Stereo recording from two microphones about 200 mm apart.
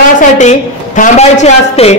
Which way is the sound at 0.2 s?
40° left (ahead or behind).